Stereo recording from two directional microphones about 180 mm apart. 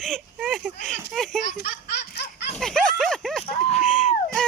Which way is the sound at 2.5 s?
Centre (ahead or behind).